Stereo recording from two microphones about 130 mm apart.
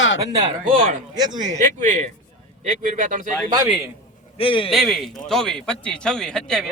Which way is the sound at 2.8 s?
85° right.